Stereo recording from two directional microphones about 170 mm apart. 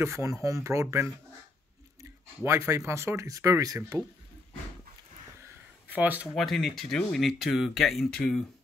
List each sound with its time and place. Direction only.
0.0 s speech: 15° right (ahead or behind)
2.4 s speech: 15° right (ahead or behind)
5.9 s speech: 10° right (ahead or behind)
6.3 s speech: centre (ahead or behind)